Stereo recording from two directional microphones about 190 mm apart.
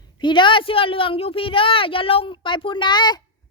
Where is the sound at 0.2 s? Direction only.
25° left (ahead or behind).